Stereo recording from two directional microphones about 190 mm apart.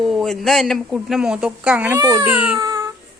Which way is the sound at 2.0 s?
20° right (ahead or behind).